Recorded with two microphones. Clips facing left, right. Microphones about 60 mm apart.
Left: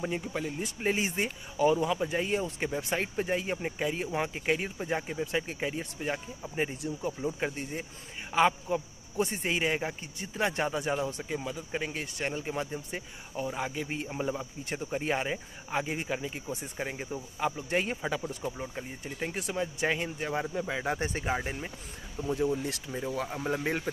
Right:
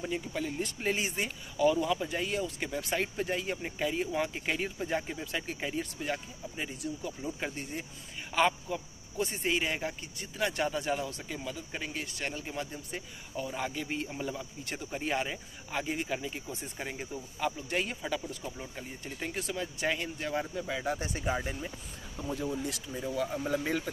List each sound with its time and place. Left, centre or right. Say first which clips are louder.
0.0 s speech: left 1 dB; left
0.6 s speech: left 2 dB; centre
0.9 s speech: left 3 dB; left
6.4 s speech: left 5 dB; left
7.2 s speech: left 4 dB; centre
19.4 s speech: left 3 dB; left
21.4 s speech: left 1 dB; left
22.6 s speech: left 2 dB; left